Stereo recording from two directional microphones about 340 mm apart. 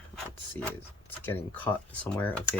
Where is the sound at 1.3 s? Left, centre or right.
Centre.